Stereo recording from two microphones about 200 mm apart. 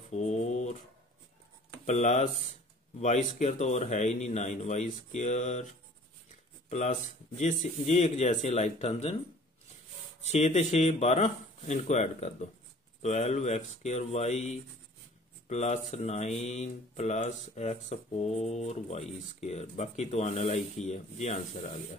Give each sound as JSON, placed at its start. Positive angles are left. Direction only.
{"t": 0.1, "sound": "a sound", "side_deg": 35}
{"t": 1.9, "sound": "speech", "side_deg": 35}
{"t": 10.2, "sound": "speech", "side_deg": 35}